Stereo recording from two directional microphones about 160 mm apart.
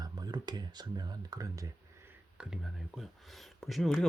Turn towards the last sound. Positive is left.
turn(degrees=0)  # may be behind; listen again after turning